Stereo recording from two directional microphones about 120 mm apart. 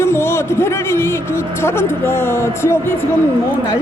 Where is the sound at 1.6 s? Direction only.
20° left (ahead or behind).